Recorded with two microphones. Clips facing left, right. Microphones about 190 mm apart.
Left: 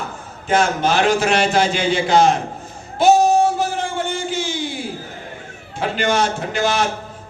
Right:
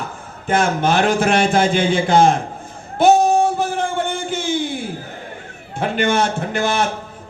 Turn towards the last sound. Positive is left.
turn(degrees=-55)  # may be behind; listen again after turning